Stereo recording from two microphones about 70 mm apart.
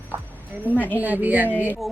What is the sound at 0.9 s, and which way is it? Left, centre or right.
Speech, right.